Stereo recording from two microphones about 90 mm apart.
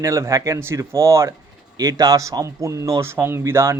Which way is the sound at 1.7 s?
45° right (ahead or behind).